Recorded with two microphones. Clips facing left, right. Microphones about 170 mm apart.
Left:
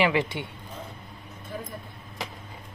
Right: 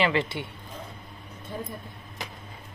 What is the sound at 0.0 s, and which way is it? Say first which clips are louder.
Speech: left 1 dB; 15° left (ahead or behind).